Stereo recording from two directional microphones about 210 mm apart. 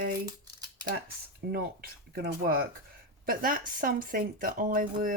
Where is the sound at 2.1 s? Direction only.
45° right (ahead or behind).